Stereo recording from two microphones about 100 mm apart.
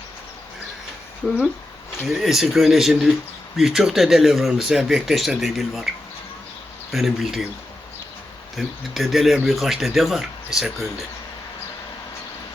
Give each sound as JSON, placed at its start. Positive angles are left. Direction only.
{"t": 2.0, "sound": "speech", "side_deg": 0}
{"t": 6.9, "sound": "speech", "side_deg": -5}
{"t": 8.5, "sound": "speech", "side_deg": 0}